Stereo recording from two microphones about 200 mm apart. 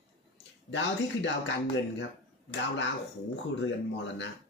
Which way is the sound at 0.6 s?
65° left (ahead or behind).